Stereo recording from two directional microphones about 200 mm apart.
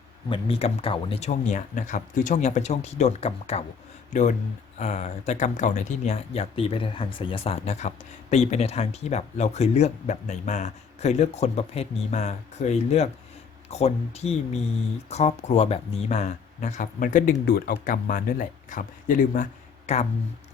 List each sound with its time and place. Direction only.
0.3 s speech: 30° left (ahead or behind)